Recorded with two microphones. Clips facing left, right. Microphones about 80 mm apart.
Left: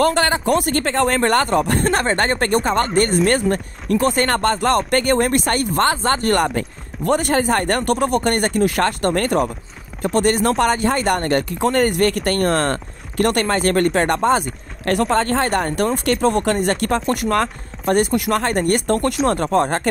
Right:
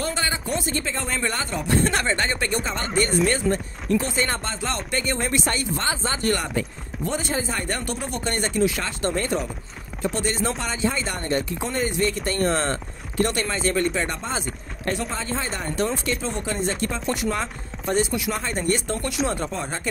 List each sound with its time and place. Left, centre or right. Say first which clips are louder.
0.0 s speech: left 10 dB; left
1.9 s speech: left 6 dB; left